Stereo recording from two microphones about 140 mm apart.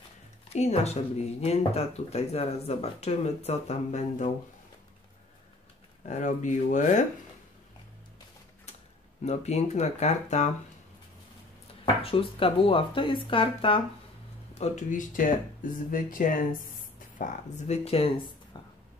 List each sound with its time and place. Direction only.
0.5 s speech: 50° left (ahead or behind)
6.0 s speech: 60° left (ahead or behind)
9.2 s speech: 50° left (ahead or behind)
11.8 s speech: 40° left (ahead or behind)
14.5 s speech: 55° left (ahead or behind); by 16.3 s 75° left (ahead or behind)
17.2 s speech: 50° left (ahead or behind)